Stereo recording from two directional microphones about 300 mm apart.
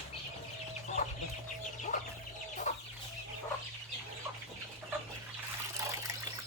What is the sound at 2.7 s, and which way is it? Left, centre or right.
Chicken, left.